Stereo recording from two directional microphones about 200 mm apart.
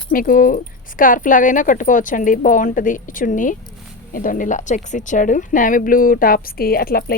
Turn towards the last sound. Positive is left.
turn(degrees=45)  # may be behind; listen again after turning